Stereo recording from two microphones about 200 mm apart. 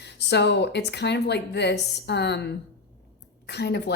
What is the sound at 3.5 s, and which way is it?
Speech, 55° left (ahead or behind).